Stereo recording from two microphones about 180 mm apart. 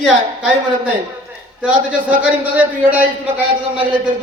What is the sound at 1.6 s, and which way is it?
Speech, 5° right (ahead or behind).